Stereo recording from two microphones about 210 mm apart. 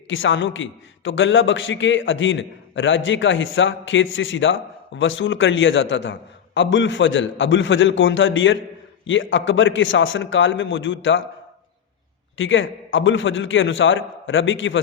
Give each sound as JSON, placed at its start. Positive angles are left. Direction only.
{"t": 0.1, "sound": "a man's voice", "side_deg": 65}
{"t": 12.4, "sound": "a man's voice", "side_deg": 65}